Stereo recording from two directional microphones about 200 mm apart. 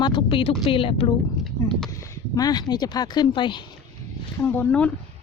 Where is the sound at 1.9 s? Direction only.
15° left (ahead or behind).